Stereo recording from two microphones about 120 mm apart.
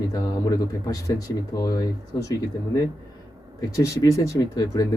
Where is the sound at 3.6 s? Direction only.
30° left (ahead or behind).